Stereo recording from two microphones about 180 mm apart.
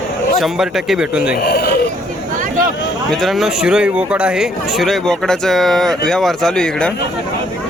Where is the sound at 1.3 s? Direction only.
60° left (ahead or behind).